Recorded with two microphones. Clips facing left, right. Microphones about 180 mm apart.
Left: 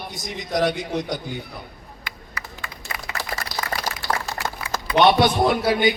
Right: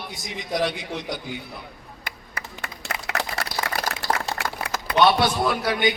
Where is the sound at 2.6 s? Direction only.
70° right (ahead or behind).